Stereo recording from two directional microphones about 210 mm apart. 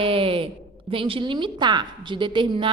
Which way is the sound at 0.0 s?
25° right (ahead or behind).